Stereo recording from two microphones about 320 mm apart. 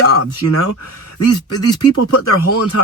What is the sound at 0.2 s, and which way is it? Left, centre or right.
Speech, left.